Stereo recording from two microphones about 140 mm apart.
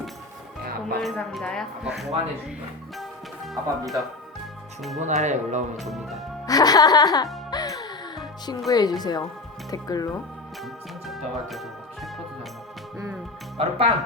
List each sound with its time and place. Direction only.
0.6 s music: 90° right
1.0 s speech: centre (ahead or behind)
3.0 s music: centre (ahead or behind)
4.9 s speech: 55° right (ahead or behind)
5.7 s speech: centre (ahead or behind)
6.4 s speech: 25° left (ahead or behind)
7.5 s music: 30° left (ahead or behind)
8.7 s speech: 30° left (ahead or behind)
10.6 s music: centre (ahead or behind)
13.6 s speech: 45° right (ahead or behind)